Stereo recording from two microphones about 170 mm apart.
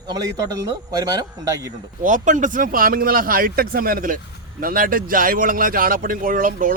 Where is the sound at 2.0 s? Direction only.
50° right (ahead or behind).